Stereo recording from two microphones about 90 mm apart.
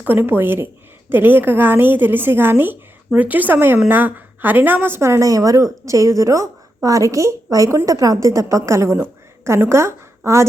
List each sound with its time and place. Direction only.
0.0 s a woman's voice: 20° right (ahead or behind)